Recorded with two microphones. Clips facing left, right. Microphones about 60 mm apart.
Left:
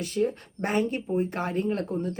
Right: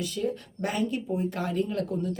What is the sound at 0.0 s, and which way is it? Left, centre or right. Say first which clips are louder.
Speech: left 3 dB; left.